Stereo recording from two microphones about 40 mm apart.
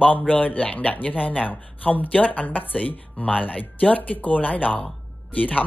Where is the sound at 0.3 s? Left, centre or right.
Left.